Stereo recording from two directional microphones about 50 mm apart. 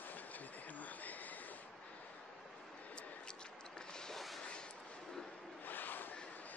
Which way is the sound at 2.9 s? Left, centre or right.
Centre.